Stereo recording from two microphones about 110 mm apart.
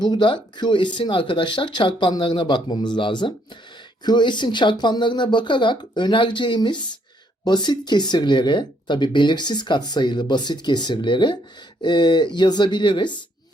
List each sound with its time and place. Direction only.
0.0 s speech: 45° left (ahead or behind)